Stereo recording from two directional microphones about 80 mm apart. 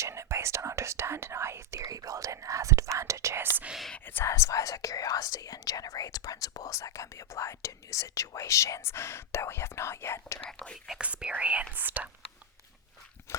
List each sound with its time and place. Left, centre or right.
0.0 s whispering: right
1.8 s whispering: right
4.0 s speech: left
10.4 s speech: centre
10.8 s speech: centre